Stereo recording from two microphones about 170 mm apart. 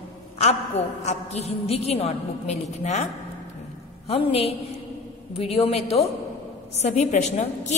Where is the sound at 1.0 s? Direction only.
40° left (ahead or behind).